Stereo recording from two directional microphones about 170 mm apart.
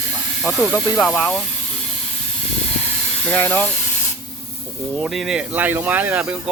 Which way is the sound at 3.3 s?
10° left (ahead or behind).